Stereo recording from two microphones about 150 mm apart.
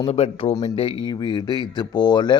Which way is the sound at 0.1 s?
40° left (ahead or behind).